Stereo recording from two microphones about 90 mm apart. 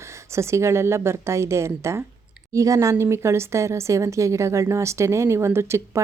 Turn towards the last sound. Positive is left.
turn(degrees=-30)  # may be behind; listen again after turning